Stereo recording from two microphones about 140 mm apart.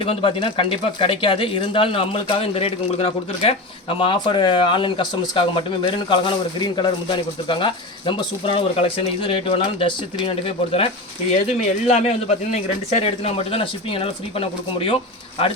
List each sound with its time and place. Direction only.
0.0 s a man's voice: 40° left (ahead or behind)